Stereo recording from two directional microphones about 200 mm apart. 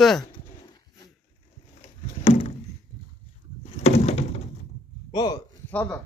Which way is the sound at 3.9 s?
30° left (ahead or behind).